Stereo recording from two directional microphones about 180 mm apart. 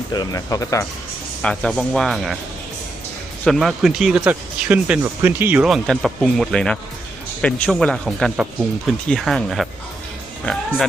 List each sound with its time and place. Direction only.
0.1 s speech: 20° left (ahead or behind)
1.4 s speech: 5° left (ahead or behind)
3.4 s speech: centre (ahead or behind)